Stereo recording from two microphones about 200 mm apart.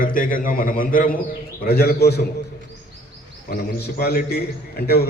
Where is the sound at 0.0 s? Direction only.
45° left (ahead or behind).